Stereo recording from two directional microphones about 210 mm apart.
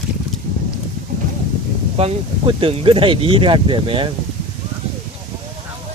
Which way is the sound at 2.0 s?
30° right (ahead or behind).